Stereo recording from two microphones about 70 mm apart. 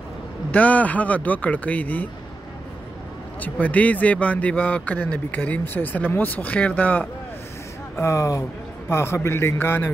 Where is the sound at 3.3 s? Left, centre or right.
Left.